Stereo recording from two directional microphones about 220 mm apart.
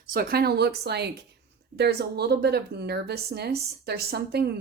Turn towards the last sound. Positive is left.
turn(degrees=-45)  # may be behind; listen again after turning